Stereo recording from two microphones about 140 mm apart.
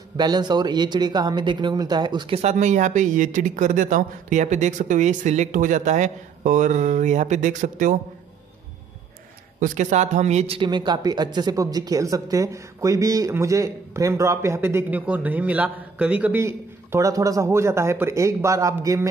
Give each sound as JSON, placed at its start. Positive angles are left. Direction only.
{"t": 0.2, "sound": "speech", "side_deg": -30}
{"t": 2.3, "sound": "speech", "side_deg": -55}
{"t": 9.6, "sound": "speech", "side_deg": -60}